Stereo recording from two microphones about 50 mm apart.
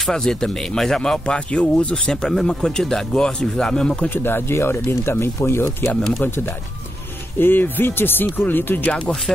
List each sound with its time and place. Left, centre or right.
0.0 s speech: centre
2.0 s speech: centre
4.1 s speech: left
6.1 s speech: left